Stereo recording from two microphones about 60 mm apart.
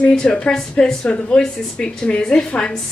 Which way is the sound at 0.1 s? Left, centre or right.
Centre.